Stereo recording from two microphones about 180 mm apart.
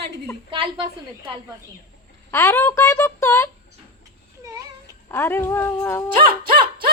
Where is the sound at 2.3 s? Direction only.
15° left (ahead or behind).